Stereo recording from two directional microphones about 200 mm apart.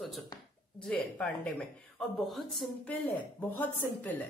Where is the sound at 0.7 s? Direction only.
5° left (ahead or behind).